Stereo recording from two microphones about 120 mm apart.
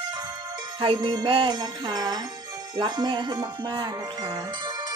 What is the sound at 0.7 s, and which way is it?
Speech, 45° right (ahead or behind).